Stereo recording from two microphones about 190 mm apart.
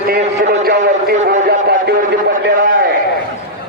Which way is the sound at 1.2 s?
55° right (ahead or behind).